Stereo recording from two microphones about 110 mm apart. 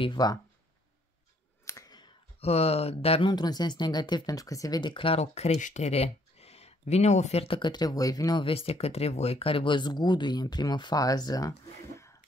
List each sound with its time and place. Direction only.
0.0 s speech: 40° left (ahead or behind)
1.7 s clicking: 35° left (ahead or behind)
2.4 s speech: 65° left (ahead or behind)
3.3 s speech: 40° left (ahead or behind)
5.2 s speech: 85° left; by 7.7 s 55° left (ahead or behind)
7.7 s speech: 35° left (ahead or behind)
8.4 s speech: 60° left (ahead or behind); by 11.5 s 35° left (ahead or behind)